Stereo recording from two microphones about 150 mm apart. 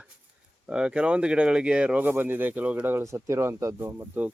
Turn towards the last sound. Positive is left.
turn(degrees=-15)  # may be behind; listen again after turning